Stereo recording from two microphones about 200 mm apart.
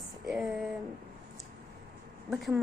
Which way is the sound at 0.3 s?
Centre (ahead or behind).